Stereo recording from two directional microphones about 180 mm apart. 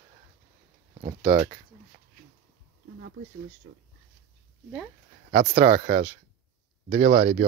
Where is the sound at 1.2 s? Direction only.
25° right (ahead or behind).